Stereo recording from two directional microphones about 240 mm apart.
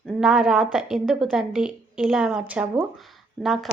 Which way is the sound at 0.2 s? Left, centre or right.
Centre.